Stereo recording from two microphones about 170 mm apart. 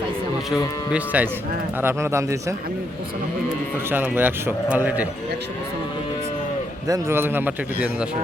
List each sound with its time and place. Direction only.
0.9 s a man's voice: 10° right (ahead or behind)
3.8 s a man's voice: 10° right (ahead or behind)
6.8 s a man's voice: 15° right (ahead or behind)